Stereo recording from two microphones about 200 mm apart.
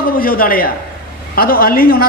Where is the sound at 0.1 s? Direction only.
45° left (ahead or behind).